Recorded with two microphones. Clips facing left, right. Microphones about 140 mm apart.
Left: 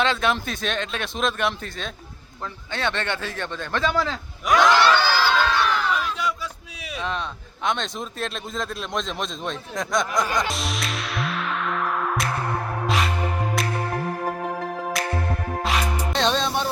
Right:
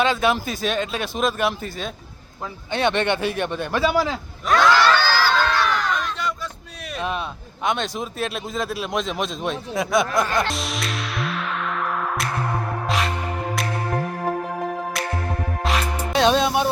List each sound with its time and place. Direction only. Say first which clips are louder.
0.0 s speech: right 3 dB; 5° right (ahead or behind)
2.7 s a man's voice: right 6 dB; 15° right (ahead or behind)
4.4 s crowd: even; 15° left (ahead or behind)
5.3 s crowd: right 1 dB; 5° left (ahead or behind)
7.0 s speech: right 2 dB; 10° right (ahead or behind)
10.4 s music: right 1 dB; centre (ahead or behind)
15.0 s music: even; centre (ahead or behind)